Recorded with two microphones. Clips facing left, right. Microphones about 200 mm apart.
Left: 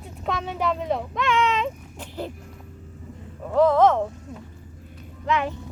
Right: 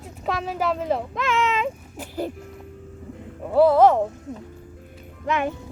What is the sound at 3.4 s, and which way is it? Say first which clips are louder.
Speech: right 2 dB; 10° right (ahead or behind).